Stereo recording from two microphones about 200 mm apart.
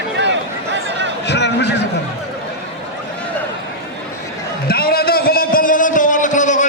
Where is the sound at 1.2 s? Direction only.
60° left (ahead or behind).